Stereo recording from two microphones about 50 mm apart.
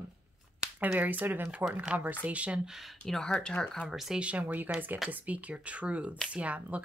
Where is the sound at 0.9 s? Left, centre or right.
Right.